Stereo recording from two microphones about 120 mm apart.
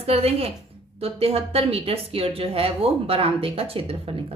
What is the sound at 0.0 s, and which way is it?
A woman's voice, 60° right (ahead or behind).